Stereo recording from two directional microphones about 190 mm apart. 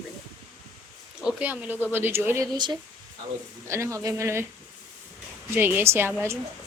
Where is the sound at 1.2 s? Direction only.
10° right (ahead or behind).